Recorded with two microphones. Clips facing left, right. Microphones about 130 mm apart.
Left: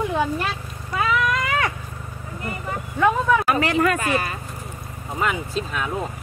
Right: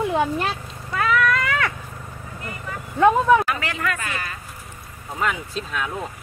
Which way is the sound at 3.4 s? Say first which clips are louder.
Left 6 dB; 35° left (ahead or behind).